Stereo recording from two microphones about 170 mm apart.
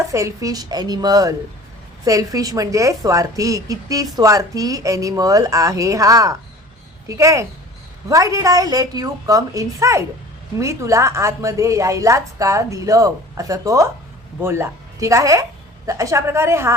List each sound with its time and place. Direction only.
0.0 s a woman's voice: 15° right (ahead or behind)